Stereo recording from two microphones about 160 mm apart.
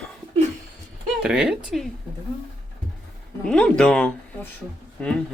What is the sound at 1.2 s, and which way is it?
Speech, 5° right (ahead or behind).